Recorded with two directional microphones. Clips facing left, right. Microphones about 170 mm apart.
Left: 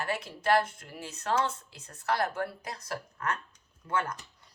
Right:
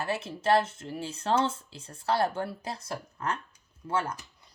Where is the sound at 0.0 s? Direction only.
25° right (ahead or behind).